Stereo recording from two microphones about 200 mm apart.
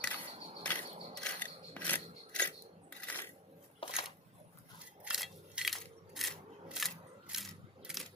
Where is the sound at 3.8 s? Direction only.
25° left (ahead or behind).